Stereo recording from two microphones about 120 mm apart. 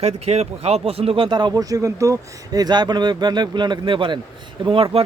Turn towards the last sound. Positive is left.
turn(degrees=-50)  # may be behind; listen again after turning